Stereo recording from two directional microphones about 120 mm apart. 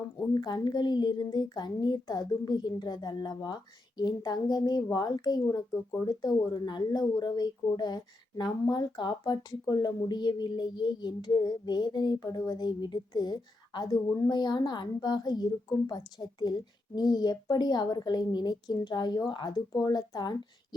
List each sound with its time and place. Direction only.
0.3 s speech: 35° left (ahead or behind)